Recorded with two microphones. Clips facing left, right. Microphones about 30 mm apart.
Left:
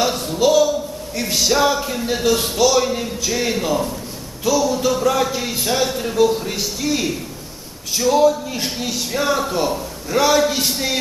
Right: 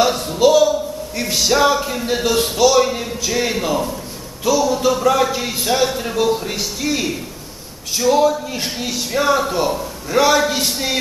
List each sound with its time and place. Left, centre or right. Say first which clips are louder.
0.0 s speech: right 3 dB; centre